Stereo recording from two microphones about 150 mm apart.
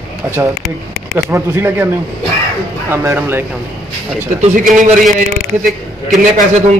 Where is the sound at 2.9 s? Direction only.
15° right (ahead or behind).